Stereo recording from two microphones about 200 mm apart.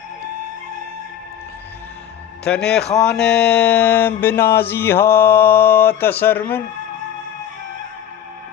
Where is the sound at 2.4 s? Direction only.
5° left (ahead or behind).